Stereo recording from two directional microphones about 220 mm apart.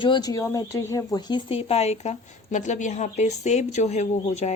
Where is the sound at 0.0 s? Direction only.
20° left (ahead or behind).